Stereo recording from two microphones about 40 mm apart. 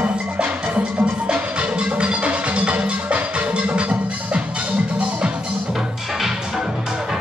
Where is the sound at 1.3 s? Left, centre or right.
Right.